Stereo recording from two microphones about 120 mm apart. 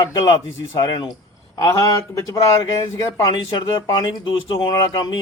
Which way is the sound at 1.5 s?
25° left (ahead or behind).